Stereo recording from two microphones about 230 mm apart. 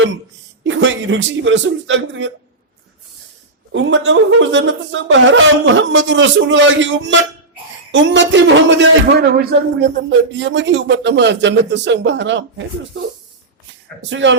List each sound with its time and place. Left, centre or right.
0.6 s a man's voice: right
3.7 s a man's voice: right